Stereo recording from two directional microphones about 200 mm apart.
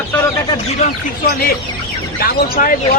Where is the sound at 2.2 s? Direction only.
45° left (ahead or behind).